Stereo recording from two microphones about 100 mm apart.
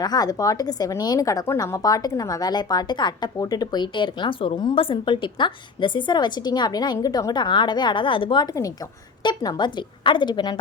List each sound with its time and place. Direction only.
0.0 s a woman's voice: 40° left (ahead or behind); by 8.4 s 55° left (ahead or behind)
9.2 s a woman's voice: 45° left (ahead or behind)